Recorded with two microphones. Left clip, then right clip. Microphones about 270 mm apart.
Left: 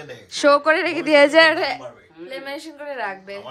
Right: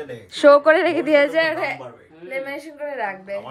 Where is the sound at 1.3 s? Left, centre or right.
Left.